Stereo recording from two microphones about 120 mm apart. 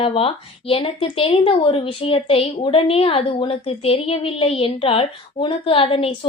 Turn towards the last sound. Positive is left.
turn(degrees=50)  # may be behind; listen again after turning